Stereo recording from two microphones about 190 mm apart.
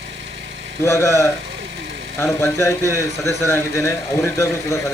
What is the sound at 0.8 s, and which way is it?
A man's voice, 15° left (ahead or behind).